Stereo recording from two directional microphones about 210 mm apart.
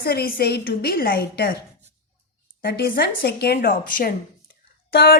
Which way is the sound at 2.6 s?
50° left (ahead or behind).